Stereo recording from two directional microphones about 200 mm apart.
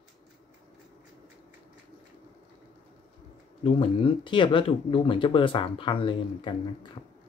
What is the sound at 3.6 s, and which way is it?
Speech, 25° left (ahead or behind).